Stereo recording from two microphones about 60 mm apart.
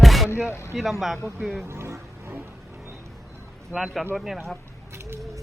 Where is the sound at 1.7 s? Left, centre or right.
Right.